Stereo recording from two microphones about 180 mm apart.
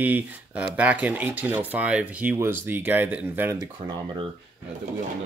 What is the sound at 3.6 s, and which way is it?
Speech, 25° right (ahead or behind).